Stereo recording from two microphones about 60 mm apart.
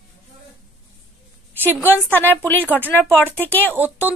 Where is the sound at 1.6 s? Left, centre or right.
Left.